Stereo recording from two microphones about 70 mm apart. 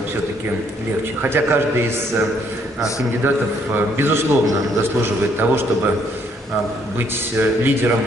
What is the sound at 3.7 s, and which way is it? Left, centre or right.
A man's voice, right.